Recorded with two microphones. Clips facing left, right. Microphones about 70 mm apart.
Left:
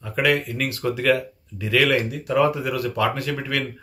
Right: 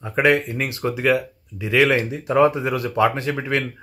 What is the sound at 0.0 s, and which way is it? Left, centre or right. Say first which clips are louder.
Speech: right 3 dB; right.